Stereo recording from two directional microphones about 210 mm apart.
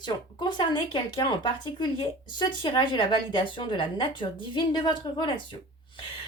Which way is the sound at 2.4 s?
20° left (ahead or behind).